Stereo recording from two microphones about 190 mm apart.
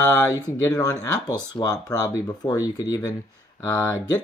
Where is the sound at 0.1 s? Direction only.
15° left (ahead or behind).